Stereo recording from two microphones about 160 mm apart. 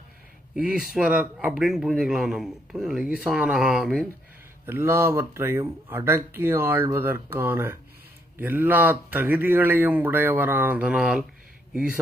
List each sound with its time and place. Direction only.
0.5 s speech: 5° right (ahead or behind)
4.6 s a man's voice: 15° right (ahead or behind)